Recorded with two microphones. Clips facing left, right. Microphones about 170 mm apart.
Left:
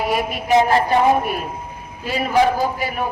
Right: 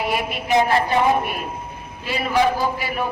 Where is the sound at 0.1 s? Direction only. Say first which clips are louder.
Left 4 dB; 40° left (ahead or behind).